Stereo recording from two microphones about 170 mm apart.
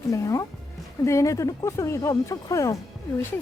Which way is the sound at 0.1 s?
20° left (ahead or behind).